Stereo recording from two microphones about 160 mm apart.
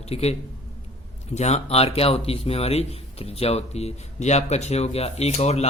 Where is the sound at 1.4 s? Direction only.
45° left (ahead or behind).